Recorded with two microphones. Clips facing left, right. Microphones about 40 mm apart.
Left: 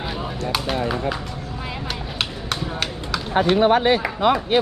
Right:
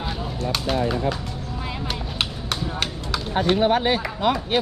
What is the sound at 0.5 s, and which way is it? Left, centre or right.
Speech, centre.